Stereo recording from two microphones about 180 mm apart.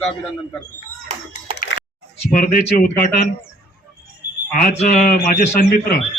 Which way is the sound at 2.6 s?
55° left (ahead or behind).